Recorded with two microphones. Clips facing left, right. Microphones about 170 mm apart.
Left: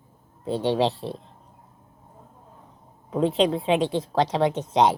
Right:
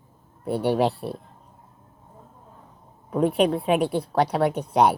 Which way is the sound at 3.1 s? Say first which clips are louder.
Right 1 dB; 25° left (ahead or behind).